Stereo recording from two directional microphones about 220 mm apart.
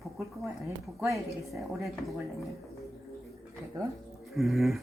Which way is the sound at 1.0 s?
Centre (ahead or behind).